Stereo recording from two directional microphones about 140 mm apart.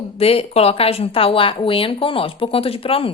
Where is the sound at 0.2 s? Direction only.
45° left (ahead or behind).